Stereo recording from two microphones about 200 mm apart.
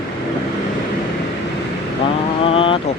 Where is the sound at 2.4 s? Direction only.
25° left (ahead or behind).